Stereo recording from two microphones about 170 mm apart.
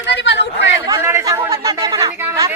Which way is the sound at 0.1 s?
90° left.